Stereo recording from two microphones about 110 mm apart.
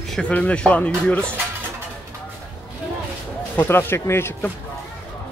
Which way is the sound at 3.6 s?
20° left (ahead or behind).